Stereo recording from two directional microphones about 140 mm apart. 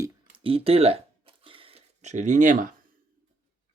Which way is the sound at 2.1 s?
60° right (ahead or behind).